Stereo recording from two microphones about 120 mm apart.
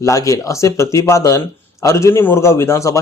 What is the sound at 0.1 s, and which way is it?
A man's voice, 25° left (ahead or behind).